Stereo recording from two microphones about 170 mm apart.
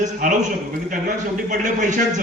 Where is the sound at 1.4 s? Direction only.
50° right (ahead or behind).